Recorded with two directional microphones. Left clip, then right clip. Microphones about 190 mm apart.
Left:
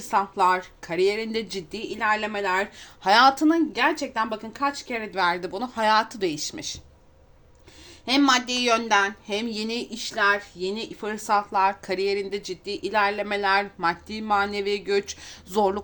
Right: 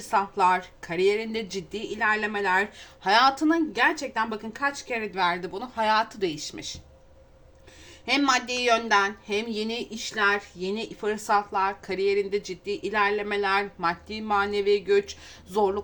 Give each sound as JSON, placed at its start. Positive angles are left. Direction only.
{"t": 0.1, "sound": "a woman's voice", "side_deg": 30}
{"t": 8.0, "sound": "speech", "side_deg": 30}